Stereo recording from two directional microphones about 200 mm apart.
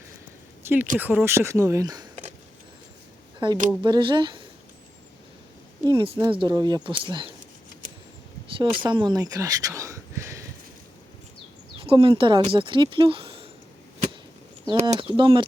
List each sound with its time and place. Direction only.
0.6 s a sound: 10° right (ahead or behind)
0.9 s speech: 10° right (ahead or behind)
3.4 s speech: 25° right (ahead or behind)
5.8 s speech: 20° right (ahead or behind)
8.5 s speech: 25° right (ahead or behind)
11.8 s speech: 25° right (ahead or behind)
14.7 s speech: 30° right (ahead or behind)